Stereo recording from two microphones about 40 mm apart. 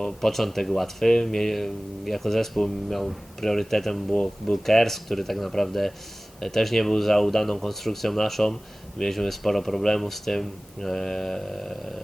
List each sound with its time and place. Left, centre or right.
0.0 s speech: centre
4.1 s speech: left
4.6 s speech: centre